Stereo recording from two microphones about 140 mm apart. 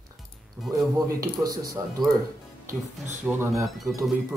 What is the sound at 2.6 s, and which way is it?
Speech, 60° right (ahead or behind).